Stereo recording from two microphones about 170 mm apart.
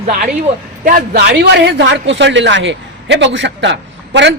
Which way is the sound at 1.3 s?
85° right.